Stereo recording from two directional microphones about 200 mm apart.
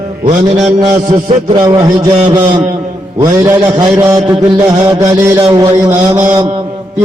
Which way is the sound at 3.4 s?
15° right (ahead or behind).